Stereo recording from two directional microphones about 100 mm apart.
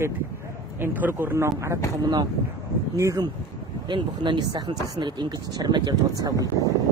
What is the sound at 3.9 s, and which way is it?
Speech, 50° right (ahead or behind).